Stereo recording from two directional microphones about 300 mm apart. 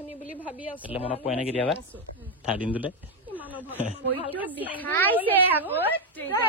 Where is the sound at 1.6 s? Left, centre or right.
Centre.